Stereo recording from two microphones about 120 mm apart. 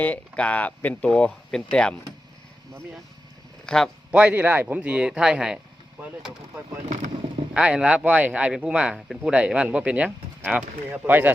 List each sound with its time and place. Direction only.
0.0 s speech: 10° left (ahead or behind)
4.1 s speech: 10° right (ahead or behind)
6.8 s speech: 90° right
7.5 s speech: 5° right (ahead or behind)